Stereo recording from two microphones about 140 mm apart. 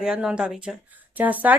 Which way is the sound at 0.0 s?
5° right (ahead or behind).